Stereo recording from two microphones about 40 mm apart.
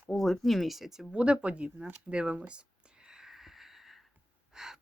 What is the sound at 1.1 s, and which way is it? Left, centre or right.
Speech, right.